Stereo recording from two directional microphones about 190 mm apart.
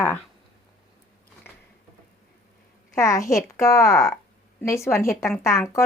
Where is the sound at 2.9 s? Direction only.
15° left (ahead or behind).